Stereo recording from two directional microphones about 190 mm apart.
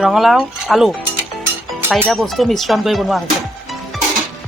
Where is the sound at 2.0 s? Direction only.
Centre (ahead or behind).